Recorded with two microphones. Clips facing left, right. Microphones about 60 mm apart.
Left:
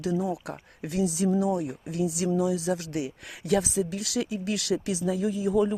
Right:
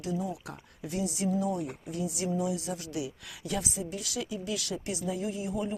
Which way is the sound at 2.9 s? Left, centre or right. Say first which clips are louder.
Left 4 dB; left.